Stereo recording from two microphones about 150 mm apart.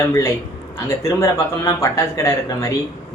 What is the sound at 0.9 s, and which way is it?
Speech, 20° left (ahead or behind).